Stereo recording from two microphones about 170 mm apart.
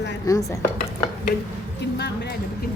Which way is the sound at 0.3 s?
20° left (ahead or behind).